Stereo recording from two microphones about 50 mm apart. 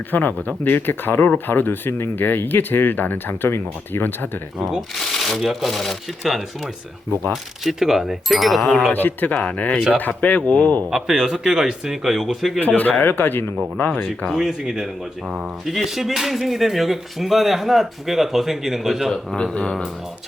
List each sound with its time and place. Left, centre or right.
0.1 s speech: left
4.9 s speech: centre
7.6 s speech: centre
8.9 s speech: left
9.4 s speech: left
10.9 s speech: centre
12.5 s speech: left
14.3 s speech: centre
19.1 s speech: centre